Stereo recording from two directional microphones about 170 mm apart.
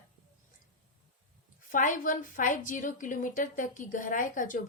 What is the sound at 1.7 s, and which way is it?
A woman's voice, 50° left (ahead or behind).